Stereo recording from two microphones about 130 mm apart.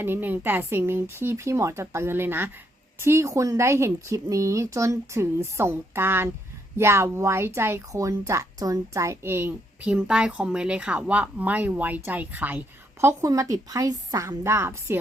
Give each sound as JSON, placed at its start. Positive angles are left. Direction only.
{"t": 0.0, "sound": "speech", "side_deg": -15}